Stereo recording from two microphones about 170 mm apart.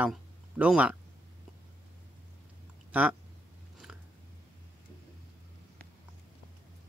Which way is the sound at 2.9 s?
10° right (ahead or behind).